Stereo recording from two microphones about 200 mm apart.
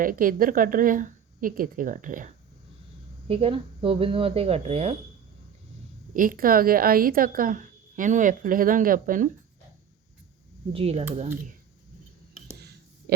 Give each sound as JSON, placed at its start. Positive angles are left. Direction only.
{"t": 0.0, "sound": "a woman's voice", "side_deg": -45}
{"t": 3.2, "sound": "speech", "side_deg": -30}
{"t": 6.1, "sound": "a woman's voice", "side_deg": -45}
{"t": 10.7, "sound": "speech", "side_deg": -30}
{"t": 13.1, "sound": "a sound", "side_deg": -55}